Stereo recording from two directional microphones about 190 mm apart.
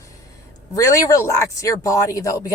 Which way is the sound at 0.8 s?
15° left (ahead or behind).